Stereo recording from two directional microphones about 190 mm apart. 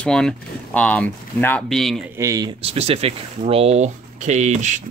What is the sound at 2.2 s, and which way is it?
Speech, 15° right (ahead or behind).